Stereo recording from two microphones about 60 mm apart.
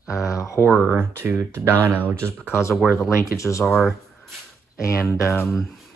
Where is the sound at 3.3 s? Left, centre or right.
Left.